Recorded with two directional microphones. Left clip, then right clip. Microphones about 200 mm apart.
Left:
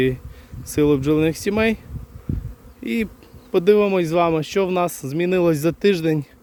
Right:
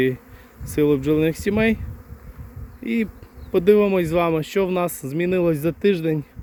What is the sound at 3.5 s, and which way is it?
Speech, 10° left (ahead or behind).